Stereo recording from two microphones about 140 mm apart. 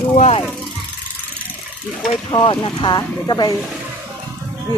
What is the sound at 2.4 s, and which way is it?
Speech, 35° left (ahead or behind).